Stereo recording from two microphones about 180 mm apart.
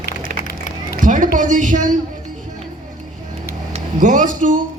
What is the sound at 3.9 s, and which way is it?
Speech, 45° right (ahead or behind).